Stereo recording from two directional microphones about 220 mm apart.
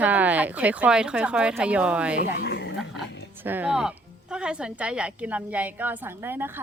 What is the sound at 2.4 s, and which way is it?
Speech, 50° left (ahead or behind).